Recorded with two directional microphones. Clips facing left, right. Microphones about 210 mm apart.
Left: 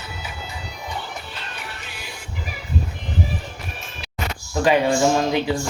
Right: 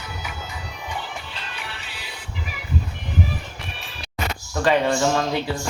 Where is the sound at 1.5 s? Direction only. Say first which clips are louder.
Left 1 dB; 45° left (ahead or behind).